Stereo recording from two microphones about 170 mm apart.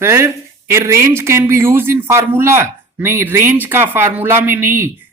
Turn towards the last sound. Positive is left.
turn(degrees=-15)  # may be behind; listen again after turning